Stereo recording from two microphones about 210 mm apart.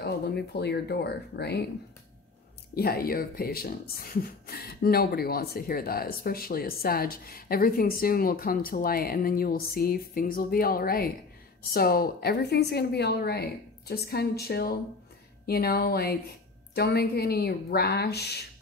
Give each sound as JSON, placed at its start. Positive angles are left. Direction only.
{"t": 0.0, "sound": "speech", "side_deg": 50}
{"t": 2.7, "sound": "speech", "side_deg": 45}